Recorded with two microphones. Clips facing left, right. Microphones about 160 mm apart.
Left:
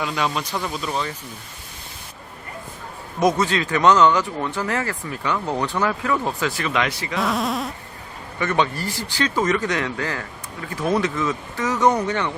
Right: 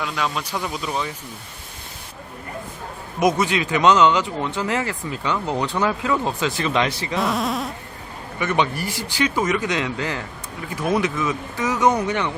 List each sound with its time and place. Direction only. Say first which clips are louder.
0.0 s insect: left 2 dB; 5° left (ahead or behind)
0.4 s speech: even; 10° right (ahead or behind)
3.2 s speech: even; 15° right (ahead or behind)
7.2 s insect: even; centre (ahead or behind)
8.4 s speech: even; 15° right (ahead or behind)